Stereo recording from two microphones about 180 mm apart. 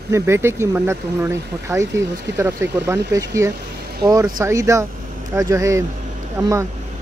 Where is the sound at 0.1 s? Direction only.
15° right (ahead or behind).